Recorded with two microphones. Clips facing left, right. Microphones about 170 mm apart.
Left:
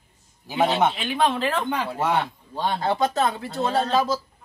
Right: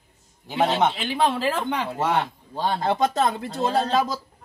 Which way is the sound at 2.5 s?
5° right (ahead or behind).